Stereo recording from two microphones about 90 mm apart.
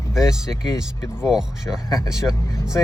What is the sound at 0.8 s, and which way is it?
Speech, 5° right (ahead or behind).